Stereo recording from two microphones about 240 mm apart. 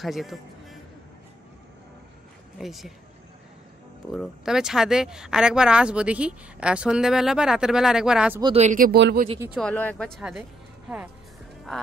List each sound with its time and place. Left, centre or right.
0.0 s speech: centre
2.6 s speech: centre
4.1 s speech: centre
8.4 s speech: right
9.4 s speech: centre